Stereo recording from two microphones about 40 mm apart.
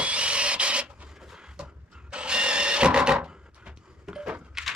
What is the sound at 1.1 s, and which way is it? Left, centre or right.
Vehicle, centre.